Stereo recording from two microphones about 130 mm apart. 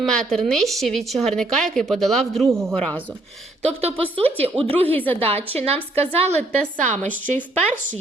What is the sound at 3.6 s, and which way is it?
Speech, 50° right (ahead or behind).